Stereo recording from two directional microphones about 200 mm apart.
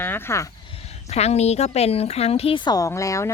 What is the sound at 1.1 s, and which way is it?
Speech, 35° left (ahead or behind).